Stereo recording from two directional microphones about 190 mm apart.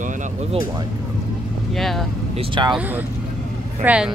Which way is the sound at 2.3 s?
25° right (ahead or behind).